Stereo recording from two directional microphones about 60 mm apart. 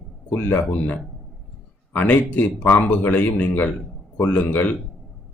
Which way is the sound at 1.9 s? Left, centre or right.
Left.